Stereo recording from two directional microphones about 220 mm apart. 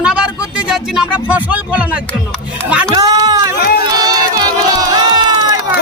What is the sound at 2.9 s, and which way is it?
Speech, 15° right (ahead or behind).